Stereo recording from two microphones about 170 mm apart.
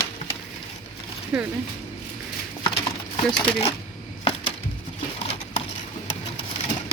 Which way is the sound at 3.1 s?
30° left (ahead or behind).